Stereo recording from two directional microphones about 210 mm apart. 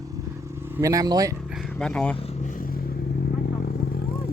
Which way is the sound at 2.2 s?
30° left (ahead or behind).